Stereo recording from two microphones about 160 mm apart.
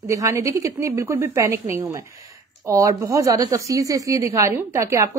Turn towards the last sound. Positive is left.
turn(degrees=-15)  # may be behind; listen again after turning